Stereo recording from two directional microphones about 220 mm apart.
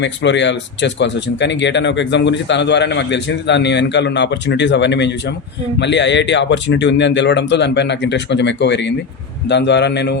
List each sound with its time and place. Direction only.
0.0 s speech: 55° left (ahead or behind)